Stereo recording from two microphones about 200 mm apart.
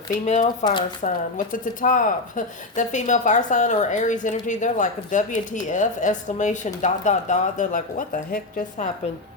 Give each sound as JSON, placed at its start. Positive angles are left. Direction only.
{"t": 0.6, "sound": "speech", "side_deg": 25}
{"t": 1.0, "sound": "a woman's voice", "side_deg": 40}